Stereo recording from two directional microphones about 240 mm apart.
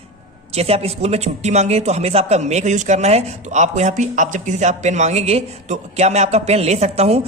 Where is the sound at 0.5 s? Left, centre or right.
Right.